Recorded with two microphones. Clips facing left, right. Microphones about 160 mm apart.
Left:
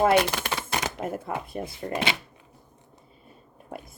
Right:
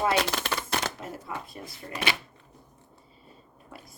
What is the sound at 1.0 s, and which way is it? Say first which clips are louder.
Speech: left 7 dB; 55° left (ahead or behind).